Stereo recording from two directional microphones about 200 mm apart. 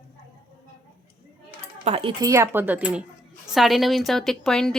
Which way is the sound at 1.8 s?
30° right (ahead or behind).